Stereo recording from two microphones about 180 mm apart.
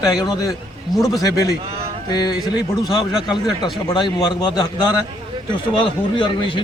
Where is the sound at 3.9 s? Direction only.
25° left (ahead or behind).